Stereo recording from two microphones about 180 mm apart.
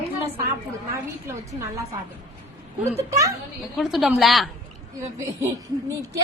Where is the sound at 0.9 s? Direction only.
15° right (ahead or behind).